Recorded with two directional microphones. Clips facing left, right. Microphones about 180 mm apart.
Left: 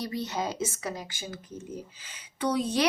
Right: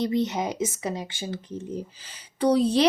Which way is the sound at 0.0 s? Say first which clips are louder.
Right 7 dB; 20° right (ahead or behind).